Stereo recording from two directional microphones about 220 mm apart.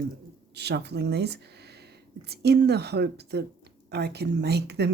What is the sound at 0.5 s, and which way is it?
Speech, 50° right (ahead or behind).